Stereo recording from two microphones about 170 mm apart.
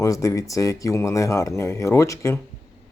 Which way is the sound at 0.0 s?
20° left (ahead or behind).